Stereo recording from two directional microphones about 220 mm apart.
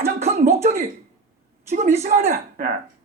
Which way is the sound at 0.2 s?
30° right (ahead or behind).